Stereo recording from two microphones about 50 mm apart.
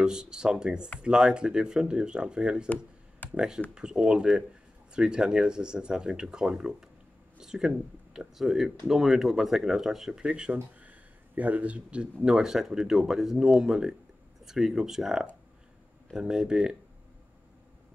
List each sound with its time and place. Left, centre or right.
0.0 s speech: centre
10.2 s speech: centre